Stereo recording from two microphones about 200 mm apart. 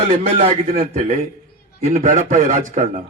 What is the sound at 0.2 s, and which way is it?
Speech, 35° right (ahead or behind).